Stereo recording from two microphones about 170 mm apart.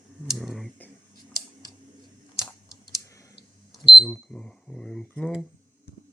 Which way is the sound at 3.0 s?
20° left (ahead or behind).